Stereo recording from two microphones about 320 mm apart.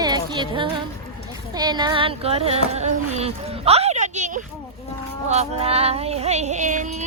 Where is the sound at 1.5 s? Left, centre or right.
Centre.